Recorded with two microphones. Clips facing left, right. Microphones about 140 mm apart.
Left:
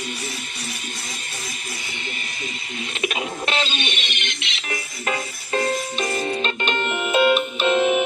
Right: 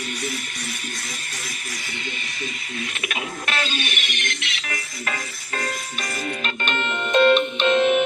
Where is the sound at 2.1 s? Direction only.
35° left (ahead or behind).